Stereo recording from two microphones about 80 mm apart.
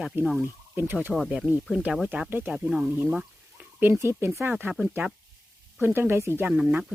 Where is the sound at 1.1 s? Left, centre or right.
Centre.